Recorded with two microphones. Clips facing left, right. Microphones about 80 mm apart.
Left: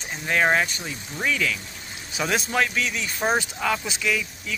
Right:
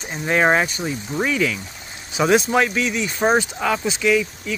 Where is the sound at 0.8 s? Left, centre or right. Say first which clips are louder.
Right 7 dB; right.